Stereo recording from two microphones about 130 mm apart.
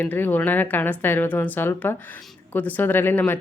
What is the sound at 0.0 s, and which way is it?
Speech, 15° left (ahead or behind).